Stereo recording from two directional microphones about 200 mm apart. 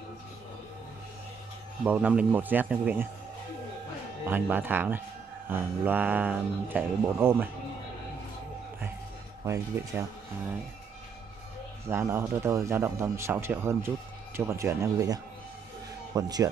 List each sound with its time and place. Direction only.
1.9 s speech: 5° right (ahead or behind)
4.3 s speech: 10° right (ahead or behind)
9.8 s speech: 10° right (ahead or behind)
11.9 s speech: 10° right (ahead or behind)